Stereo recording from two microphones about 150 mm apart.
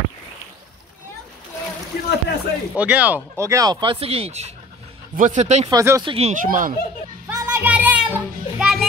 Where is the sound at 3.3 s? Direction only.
20° right (ahead or behind); by 4.5 s 45° right (ahead or behind).